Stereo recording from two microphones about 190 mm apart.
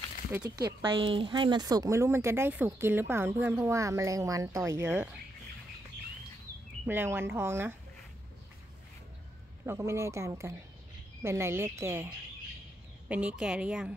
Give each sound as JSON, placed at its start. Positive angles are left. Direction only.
{"t": 0.8, "sound": "speech", "side_deg": -25}
{"t": 6.9, "sound": "speech", "side_deg": -10}
{"t": 9.7, "sound": "speech", "side_deg": -15}
{"t": 13.1, "sound": "a woman's voice", "side_deg": -10}